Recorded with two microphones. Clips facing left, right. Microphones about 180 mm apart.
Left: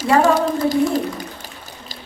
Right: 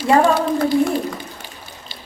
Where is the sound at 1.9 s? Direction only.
40° left (ahead or behind).